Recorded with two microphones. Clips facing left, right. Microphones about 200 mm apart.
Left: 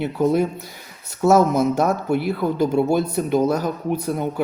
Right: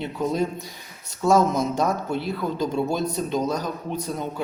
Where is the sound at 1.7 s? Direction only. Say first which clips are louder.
Left 4 dB; 60° left (ahead or behind).